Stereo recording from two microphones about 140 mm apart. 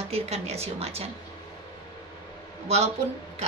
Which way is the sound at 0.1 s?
50° right (ahead or behind).